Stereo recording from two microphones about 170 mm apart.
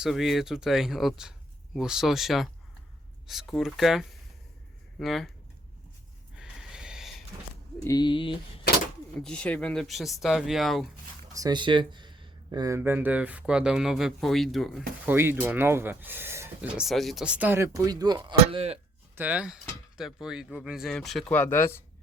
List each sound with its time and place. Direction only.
0.0 s speech: centre (ahead or behind)
6.3 s snort: 5° right (ahead or behind)
7.9 s speech: 25° left (ahead or behind)
9.1 s speech: 5° left (ahead or behind)
11.3 s speech: 25° right (ahead or behind); by 14.8 s centre (ahead or behind)
15.0 s speech: 15° right (ahead or behind); by 18.8 s 35° right (ahead or behind)
19.1 s speech: 10° right (ahead or behind); by 21.8 s 15° left (ahead or behind)